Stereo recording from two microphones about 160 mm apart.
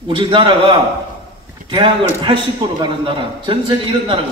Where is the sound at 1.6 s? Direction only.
30° right (ahead or behind).